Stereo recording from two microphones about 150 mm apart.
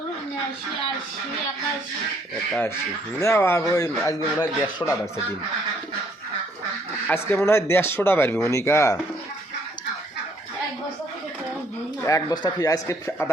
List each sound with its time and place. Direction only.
3.2 s speech: 20° left (ahead or behind)
7.1 s speech: 15° left (ahead or behind)
12.0 s speech: 25° left (ahead or behind)